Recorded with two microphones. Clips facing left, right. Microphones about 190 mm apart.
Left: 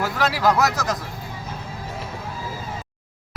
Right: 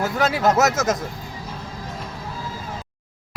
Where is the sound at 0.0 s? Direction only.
25° right (ahead or behind).